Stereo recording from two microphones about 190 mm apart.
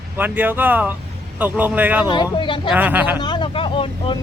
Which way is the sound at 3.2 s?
25° left (ahead or behind).